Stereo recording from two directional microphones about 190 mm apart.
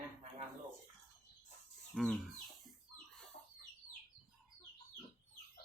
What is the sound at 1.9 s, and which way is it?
Chicken, centre (ahead or behind).